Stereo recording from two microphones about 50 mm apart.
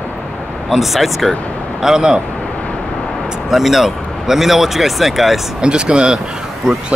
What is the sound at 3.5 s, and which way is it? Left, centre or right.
Speech, centre.